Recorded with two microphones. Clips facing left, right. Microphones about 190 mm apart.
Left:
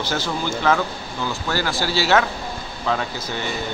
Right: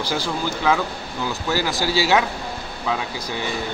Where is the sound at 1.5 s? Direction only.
15° right (ahead or behind).